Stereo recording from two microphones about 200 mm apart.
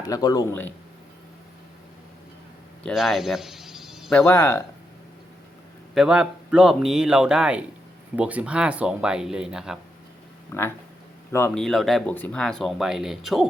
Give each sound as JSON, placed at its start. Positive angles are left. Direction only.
{"t": 0.0, "sound": "speech", "side_deg": 20}
{"t": 2.8, "sound": "a sound", "side_deg": 0}
{"t": 4.2, "sound": "speech", "side_deg": 10}
{"t": 5.9, "sound": "speech", "side_deg": -5}
{"t": 10.5, "sound": "speech", "side_deg": 10}